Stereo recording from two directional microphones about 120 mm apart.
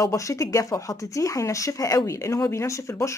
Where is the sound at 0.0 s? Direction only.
25° left (ahead or behind).